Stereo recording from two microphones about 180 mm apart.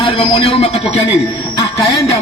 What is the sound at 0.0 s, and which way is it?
A man's voice, 30° left (ahead or behind).